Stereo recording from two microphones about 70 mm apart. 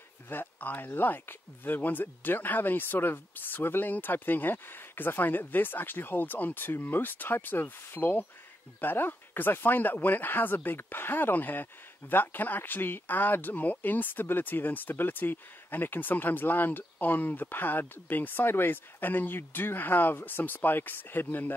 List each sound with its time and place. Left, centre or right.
0.3 s speech: left